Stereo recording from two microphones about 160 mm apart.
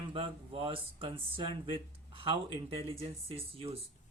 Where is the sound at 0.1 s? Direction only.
35° right (ahead or behind).